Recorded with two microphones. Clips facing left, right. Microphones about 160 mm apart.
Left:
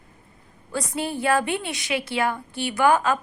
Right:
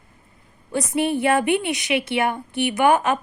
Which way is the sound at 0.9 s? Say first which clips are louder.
Right 4 dB; 20° right (ahead or behind).